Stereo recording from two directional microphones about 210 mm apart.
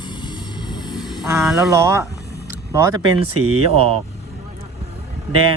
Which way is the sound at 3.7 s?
30° right (ahead or behind).